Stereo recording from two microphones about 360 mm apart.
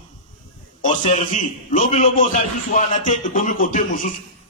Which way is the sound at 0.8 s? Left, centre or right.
Centre.